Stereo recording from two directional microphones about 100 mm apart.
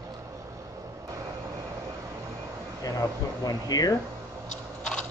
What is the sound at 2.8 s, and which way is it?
Speech, 40° left (ahead or behind).